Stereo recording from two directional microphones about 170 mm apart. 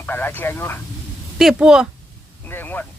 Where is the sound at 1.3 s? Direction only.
5° right (ahead or behind).